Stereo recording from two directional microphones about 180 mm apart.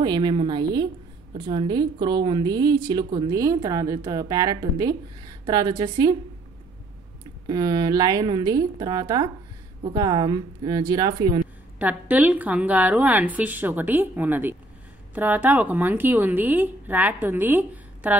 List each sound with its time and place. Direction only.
0.0 s a woman's voice: 25° right (ahead or behind)
7.4 s a woman's voice: 20° right (ahead or behind)
11.8 s a woman's voice: 10° right (ahead or behind)